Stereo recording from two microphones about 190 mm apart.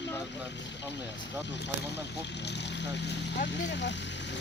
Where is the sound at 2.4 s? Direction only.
60° left (ahead or behind).